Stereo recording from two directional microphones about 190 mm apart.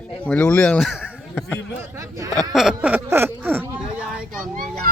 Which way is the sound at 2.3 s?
Centre (ahead or behind).